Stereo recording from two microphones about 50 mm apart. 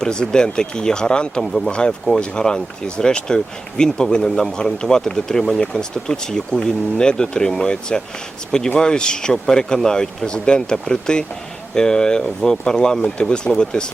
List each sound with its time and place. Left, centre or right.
0.0 s speech: centre